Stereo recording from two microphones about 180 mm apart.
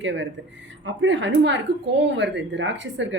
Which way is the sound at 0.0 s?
90° right.